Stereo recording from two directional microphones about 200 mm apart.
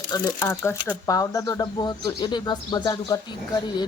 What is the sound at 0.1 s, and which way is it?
Speech, 10° left (ahead or behind).